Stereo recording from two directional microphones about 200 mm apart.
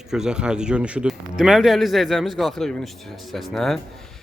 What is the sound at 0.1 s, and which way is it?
Speech, 5° right (ahead or behind).